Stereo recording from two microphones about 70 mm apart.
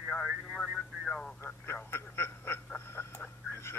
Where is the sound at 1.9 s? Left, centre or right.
Left.